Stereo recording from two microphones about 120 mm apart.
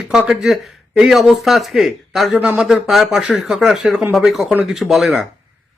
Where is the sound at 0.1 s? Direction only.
5° right (ahead or behind).